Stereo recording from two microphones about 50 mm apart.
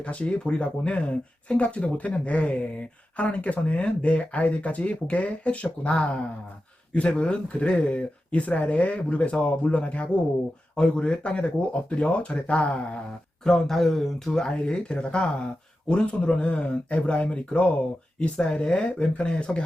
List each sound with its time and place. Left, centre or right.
0.0 s speech: left
13.4 s speech: centre